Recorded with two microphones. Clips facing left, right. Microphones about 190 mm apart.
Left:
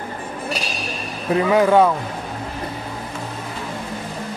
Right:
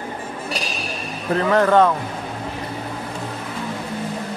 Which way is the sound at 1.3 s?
10° left (ahead or behind).